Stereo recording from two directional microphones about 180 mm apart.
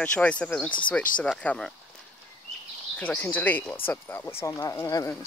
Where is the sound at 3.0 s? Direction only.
10° left (ahead or behind).